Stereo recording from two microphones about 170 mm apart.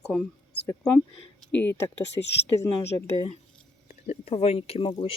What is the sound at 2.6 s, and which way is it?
Speech, 15° left (ahead or behind).